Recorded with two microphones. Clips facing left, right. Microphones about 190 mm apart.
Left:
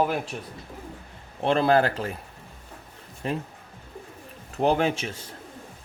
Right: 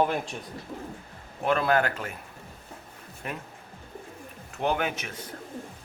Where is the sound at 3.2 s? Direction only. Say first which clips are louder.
Left 7 dB; 30° left (ahead or behind).